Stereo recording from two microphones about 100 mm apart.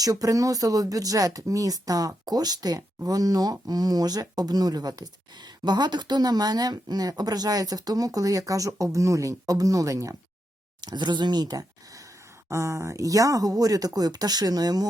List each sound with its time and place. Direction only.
0.0 s speech: 35° right (ahead or behind)
10.8 s speech: 45° right (ahead or behind)
12.5 s speech: 30° right (ahead or behind)